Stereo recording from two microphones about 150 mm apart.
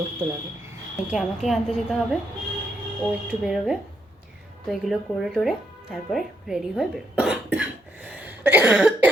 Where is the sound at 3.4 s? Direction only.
5° right (ahead or behind).